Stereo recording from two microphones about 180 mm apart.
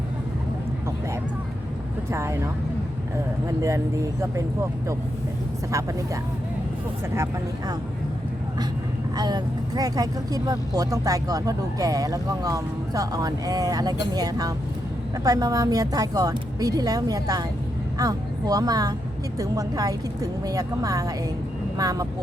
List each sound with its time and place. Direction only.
2.0 s speech: 15° right (ahead or behind)
3.6 s speech: 15° right (ahead or behind)
9.1 s speech: 20° right (ahead or behind)